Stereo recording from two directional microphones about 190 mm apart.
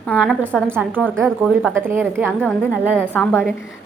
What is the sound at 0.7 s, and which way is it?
A woman's voice, 10° right (ahead or behind).